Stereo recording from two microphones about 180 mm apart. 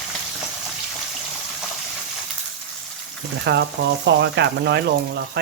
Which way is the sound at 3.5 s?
75° right (ahead or behind).